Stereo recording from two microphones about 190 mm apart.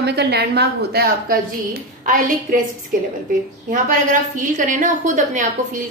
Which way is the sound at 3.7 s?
40° right (ahead or behind).